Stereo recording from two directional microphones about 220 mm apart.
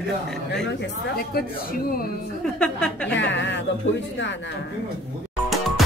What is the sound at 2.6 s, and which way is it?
Speech, 5° left (ahead or behind).